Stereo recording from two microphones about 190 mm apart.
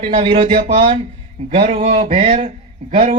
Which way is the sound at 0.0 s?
30° right (ahead or behind).